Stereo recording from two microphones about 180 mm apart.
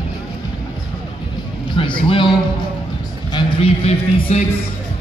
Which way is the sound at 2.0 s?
30° left (ahead or behind).